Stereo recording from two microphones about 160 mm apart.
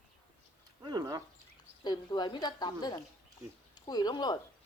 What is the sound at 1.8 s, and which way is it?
A woman's voice, 25° left (ahead or behind).